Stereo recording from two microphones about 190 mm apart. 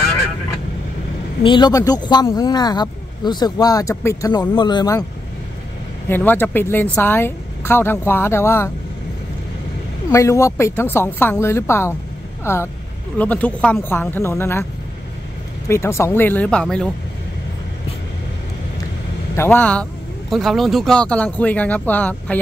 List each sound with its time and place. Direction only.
1.4 s speech: 25° left (ahead or behind)
6.0 s speech: 10° left (ahead or behind)
10.1 s speech: 15° left (ahead or behind)
15.7 s speech: 15° left (ahead or behind)
19.3 s speech: 10° left (ahead or behind)